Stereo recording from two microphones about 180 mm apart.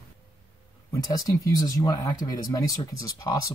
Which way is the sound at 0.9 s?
20° left (ahead or behind).